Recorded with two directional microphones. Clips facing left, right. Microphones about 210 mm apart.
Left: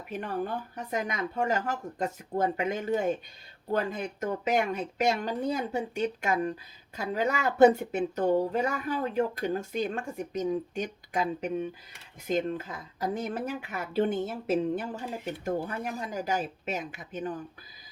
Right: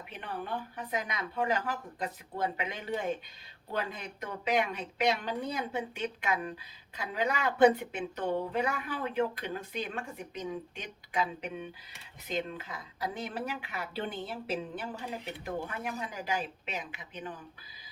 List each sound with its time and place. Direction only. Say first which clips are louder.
0.1 s speech: left 6 dB; 45° left (ahead or behind)